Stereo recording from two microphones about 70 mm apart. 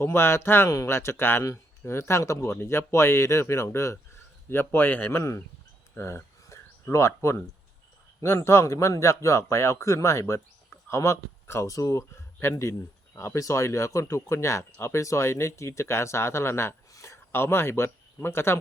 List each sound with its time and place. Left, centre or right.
0.0 s speech: left
5.9 s a sound: left
8.2 s speech: left
11.6 s speech: left